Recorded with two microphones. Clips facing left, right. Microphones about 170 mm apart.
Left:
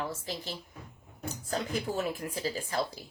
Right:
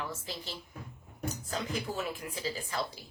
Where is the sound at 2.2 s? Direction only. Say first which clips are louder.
Left 4 dB; 45° left (ahead or behind).